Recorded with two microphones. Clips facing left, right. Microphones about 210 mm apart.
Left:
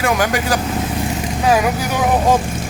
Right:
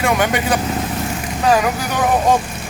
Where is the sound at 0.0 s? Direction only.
Centre (ahead or behind).